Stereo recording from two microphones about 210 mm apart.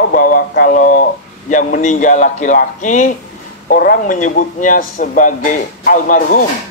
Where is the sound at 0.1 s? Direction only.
40° left (ahead or behind).